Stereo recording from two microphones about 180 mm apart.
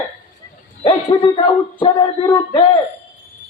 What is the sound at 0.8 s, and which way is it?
Speech, 25° left (ahead or behind).